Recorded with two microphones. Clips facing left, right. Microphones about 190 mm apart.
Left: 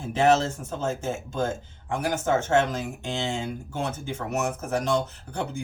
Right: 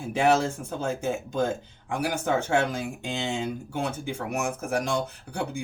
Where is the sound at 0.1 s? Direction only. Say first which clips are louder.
Left 1 dB; 15° right (ahead or behind).